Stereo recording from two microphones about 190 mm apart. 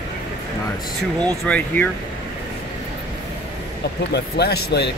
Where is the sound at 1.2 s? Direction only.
5° left (ahead or behind).